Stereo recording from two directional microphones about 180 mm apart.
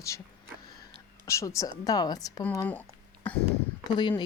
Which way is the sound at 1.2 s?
15° left (ahead or behind).